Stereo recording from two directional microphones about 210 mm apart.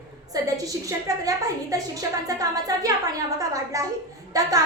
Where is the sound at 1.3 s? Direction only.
15° right (ahead or behind).